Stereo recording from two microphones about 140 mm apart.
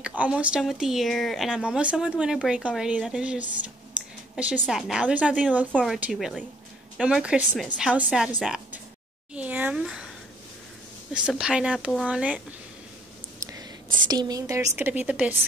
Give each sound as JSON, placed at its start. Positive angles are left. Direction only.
{"t": 0.0, "sound": "speech", "side_deg": -10}
{"t": 5.7, "sound": "speech", "side_deg": 5}
{"t": 9.3, "sound": "a sound", "side_deg": -10}
{"t": 11.1, "sound": "speech", "side_deg": -5}
{"t": 13.4, "sound": "writing", "side_deg": -25}
{"t": 13.9, "sound": "a woman's voice", "side_deg": -30}
{"t": 14.8, "sound": "speech", "side_deg": -10}